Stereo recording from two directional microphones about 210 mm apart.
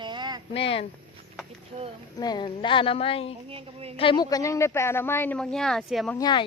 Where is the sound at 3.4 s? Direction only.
25° right (ahead or behind).